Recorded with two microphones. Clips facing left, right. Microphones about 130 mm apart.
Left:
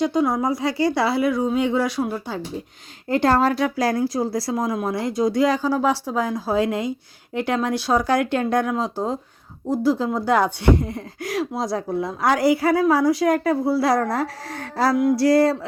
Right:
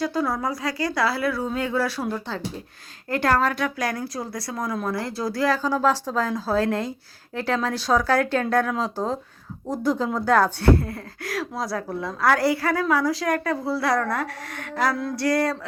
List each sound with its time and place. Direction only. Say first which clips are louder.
0.0 s speech: left 4 dB; 20° left (ahead or behind)
3.1 s speech: left 4 dB; 25° left (ahead or behind)
14.9 s speech: left 7 dB; 20° left (ahead or behind)